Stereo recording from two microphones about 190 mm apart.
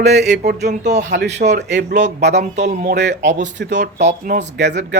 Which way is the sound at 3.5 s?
65° right (ahead or behind).